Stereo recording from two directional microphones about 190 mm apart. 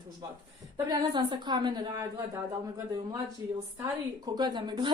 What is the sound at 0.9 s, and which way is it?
A woman's voice, 20° right (ahead or behind).